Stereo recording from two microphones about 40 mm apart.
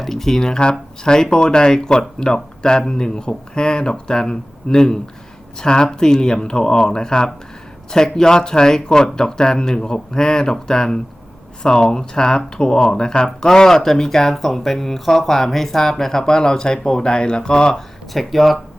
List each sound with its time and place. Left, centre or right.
0.0 s speech: centre
18.1 s speech: centre